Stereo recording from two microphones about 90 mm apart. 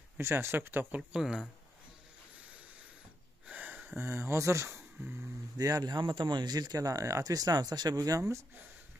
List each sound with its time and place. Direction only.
0.2 s speech: 30° right (ahead or behind)
1.1 s speech: 10° right (ahead or behind)
3.4 s speech: 15° right (ahead or behind); by 4.7 s 30° right (ahead or behind)
4.7 s a sound: 20° right (ahead or behind)
5.6 s speech: 45° right (ahead or behind)
8.2 s speech: 30° right (ahead or behind)